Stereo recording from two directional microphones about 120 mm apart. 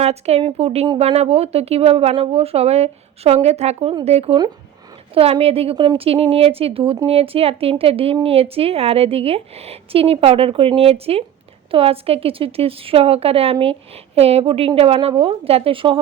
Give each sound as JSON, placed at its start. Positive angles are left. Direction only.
{"t": 0.0, "sound": "a woman's voice", "side_deg": -60}